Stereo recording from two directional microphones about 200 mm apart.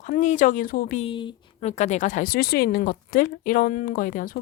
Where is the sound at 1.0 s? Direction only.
25° left (ahead or behind).